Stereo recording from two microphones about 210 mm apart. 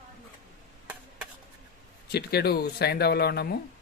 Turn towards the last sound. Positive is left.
turn(degrees=50)  # may be behind; listen again after turning